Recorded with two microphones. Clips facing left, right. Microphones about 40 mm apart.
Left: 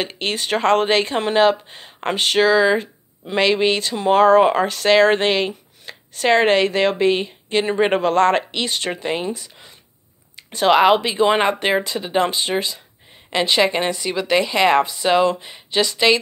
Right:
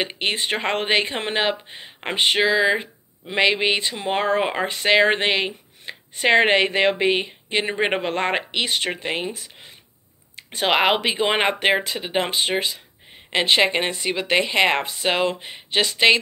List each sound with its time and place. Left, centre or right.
0.0 s speech: centre; by 16.2 s right